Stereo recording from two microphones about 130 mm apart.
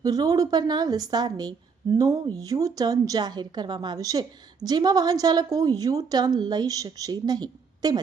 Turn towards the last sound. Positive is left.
turn(degrees=-30)  # may be behind; listen again after turning